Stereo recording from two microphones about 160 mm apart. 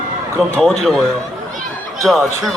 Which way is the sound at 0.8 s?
Centre (ahead or behind).